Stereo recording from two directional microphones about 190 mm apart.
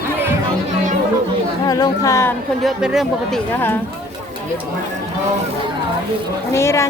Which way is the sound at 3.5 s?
10° left (ahead or behind).